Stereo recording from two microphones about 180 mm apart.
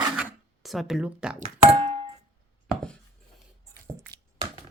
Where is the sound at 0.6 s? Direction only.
Centre (ahead or behind).